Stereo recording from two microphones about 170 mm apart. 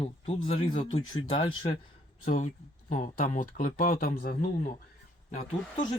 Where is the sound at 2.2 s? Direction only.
50° left (ahead or behind).